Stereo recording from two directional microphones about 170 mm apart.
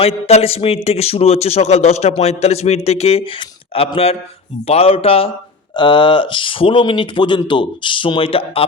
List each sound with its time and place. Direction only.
0.0 s a man's voice: 35° left (ahead or behind)